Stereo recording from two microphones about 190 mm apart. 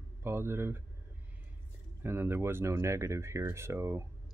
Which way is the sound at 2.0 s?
10° right (ahead or behind).